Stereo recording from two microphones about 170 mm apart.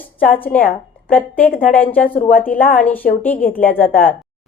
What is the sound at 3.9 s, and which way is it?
Speech, 55° left (ahead or behind).